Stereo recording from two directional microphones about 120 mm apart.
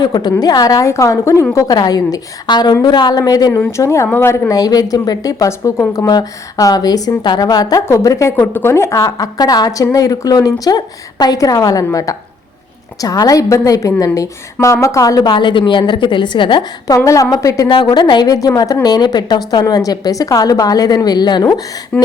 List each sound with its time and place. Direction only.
0.0 s a woman's voice: 35° left (ahead or behind)
17.7 s a woman's voice: 40° left (ahead or behind)
21.9 s a sound: 10° left (ahead or behind)